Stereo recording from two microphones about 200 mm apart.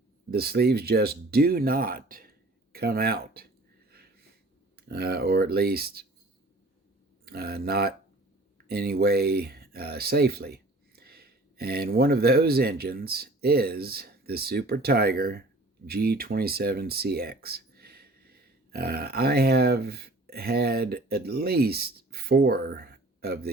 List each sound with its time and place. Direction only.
0.3 s speech: 50° right (ahead or behind)
4.8 s speech: 55° right (ahead or behind)
7.3 s speech: 50° right (ahead or behind)